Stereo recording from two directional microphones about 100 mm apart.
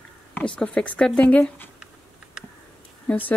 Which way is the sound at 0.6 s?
10° left (ahead or behind).